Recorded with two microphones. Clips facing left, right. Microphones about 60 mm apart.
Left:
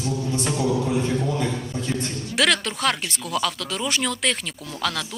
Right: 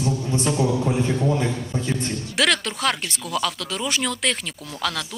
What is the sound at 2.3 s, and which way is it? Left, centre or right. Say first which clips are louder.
Speech: left 1 dB; centre.